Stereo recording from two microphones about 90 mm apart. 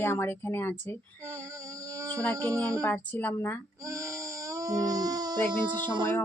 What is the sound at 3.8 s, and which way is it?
Baby cry, 35° right (ahead or behind).